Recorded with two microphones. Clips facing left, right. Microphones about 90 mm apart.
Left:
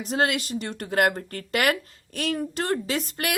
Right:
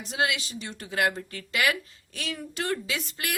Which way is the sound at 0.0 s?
50° left (ahead or behind).